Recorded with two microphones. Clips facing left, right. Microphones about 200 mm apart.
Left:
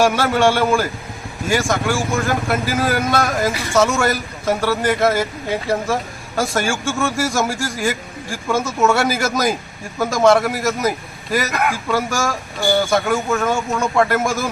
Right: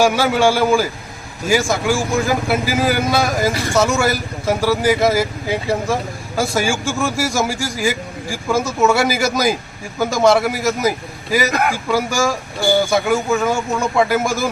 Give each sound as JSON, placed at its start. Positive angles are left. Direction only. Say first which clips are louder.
{"t": 0.0, "sound": "speech", "louder": "right 1 dB", "side_deg": 0}